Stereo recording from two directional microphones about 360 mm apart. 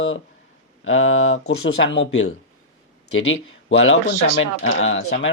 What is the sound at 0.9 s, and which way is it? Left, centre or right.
Speech, left.